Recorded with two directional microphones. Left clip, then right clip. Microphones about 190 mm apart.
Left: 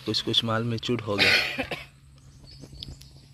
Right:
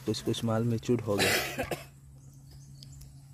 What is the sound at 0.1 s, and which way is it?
Speech, 10° right (ahead or behind).